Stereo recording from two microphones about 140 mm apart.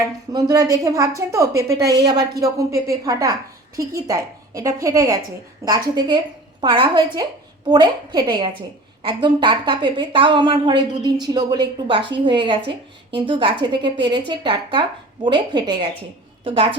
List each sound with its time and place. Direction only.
0.3 s a woman's voice: 25° right (ahead or behind)